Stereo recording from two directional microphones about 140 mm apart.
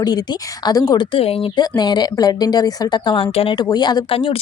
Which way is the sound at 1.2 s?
45° left (ahead or behind).